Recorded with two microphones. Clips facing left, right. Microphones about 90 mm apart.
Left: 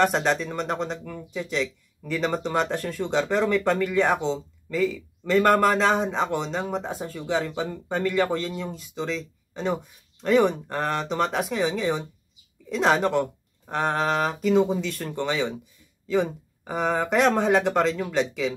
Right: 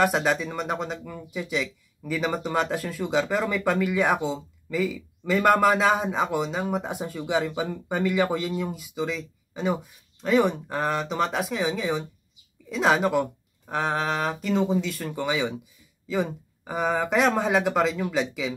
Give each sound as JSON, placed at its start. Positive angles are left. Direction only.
{"t": 0.0, "sound": "speech", "side_deg": -5}